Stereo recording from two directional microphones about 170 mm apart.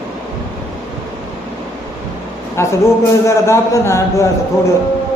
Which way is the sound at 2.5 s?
15° left (ahead or behind).